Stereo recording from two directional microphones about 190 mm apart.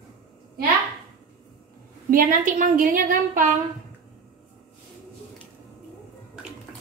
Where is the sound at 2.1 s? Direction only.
45° right (ahead or behind).